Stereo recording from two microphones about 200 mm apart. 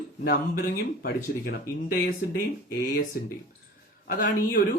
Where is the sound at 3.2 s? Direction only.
50° left (ahead or behind).